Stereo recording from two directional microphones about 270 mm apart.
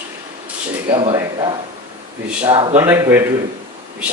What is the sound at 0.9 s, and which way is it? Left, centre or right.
Speech, centre.